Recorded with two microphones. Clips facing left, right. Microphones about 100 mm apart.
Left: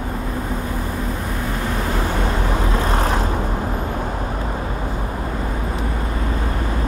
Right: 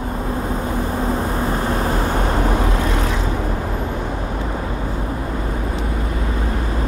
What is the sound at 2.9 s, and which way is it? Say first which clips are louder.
Vehicle: left 2 dB; 45° left (ahead or behind).